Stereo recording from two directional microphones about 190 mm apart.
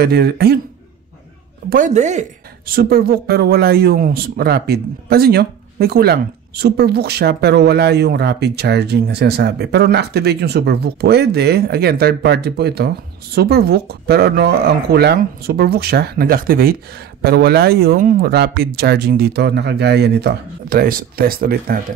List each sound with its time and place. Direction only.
0.0 s a woman's voice: 55° right (ahead or behind)
1.7 s a woman's voice: 40° right (ahead or behind)